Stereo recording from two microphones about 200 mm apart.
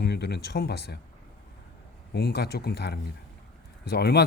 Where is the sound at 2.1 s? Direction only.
55° left (ahead or behind).